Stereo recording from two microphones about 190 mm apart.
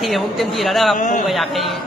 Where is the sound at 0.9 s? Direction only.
40° left (ahead or behind).